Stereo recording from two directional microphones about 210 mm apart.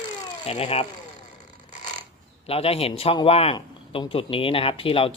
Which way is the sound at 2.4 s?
30° left (ahead or behind).